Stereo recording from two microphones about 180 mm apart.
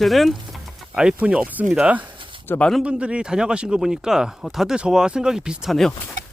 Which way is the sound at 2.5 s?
5° left (ahead or behind).